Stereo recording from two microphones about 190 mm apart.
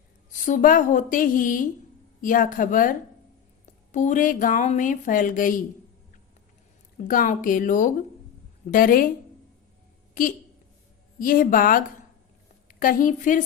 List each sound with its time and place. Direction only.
0.4 s speech: 45° left (ahead or behind)
3.9 s speech: 40° left (ahead or behind)
6.9 s speech: 45° left (ahead or behind)
10.2 s a woman's voice: 45° left (ahead or behind)